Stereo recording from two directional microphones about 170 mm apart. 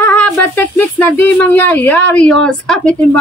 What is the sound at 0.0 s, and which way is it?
Speech, 10° left (ahead or behind).